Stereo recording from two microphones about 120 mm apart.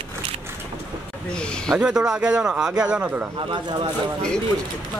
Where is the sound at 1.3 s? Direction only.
5° left (ahead or behind).